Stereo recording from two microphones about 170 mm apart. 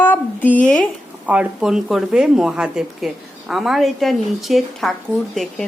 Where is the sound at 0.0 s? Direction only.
10° left (ahead or behind).